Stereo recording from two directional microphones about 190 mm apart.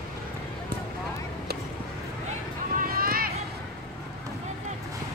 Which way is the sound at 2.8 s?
50° right (ahead or behind).